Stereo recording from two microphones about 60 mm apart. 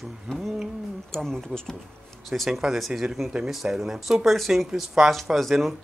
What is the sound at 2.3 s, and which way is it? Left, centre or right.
Speech, centre.